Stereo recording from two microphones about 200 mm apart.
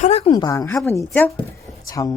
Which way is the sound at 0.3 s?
15° left (ahead or behind).